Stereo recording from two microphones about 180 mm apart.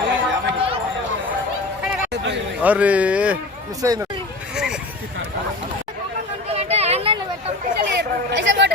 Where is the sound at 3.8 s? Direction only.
20° right (ahead or behind).